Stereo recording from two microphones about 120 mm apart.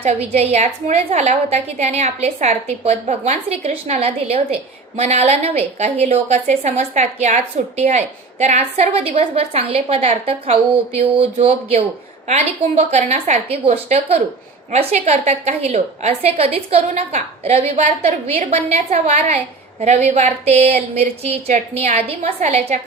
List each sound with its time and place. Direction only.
0.0 s a woman's voice: 65° right (ahead or behind)